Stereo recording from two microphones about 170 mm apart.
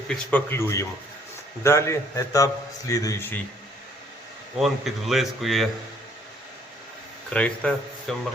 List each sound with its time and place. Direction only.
0.1 s a man's voice: 10° left (ahead or behind)
4.5 s speech: centre (ahead or behind)
7.3 s speech: 5° left (ahead or behind)